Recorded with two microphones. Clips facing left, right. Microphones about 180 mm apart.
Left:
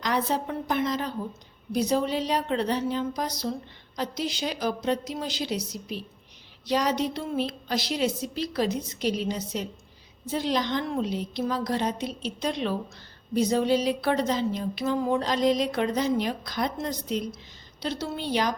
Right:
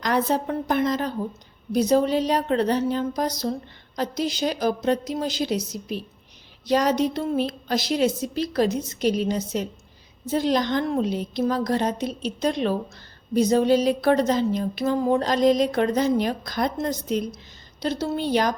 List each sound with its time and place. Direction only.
0.0 s speech: 45° right (ahead or behind)